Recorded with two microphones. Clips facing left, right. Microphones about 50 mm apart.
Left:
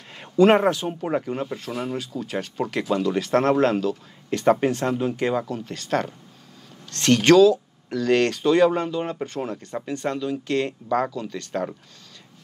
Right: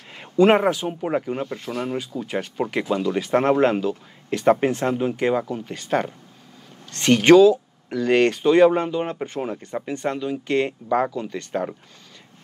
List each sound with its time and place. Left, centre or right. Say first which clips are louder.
0.5 s speech: even; centre